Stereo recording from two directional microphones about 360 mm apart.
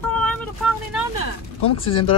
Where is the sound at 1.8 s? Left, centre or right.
Centre.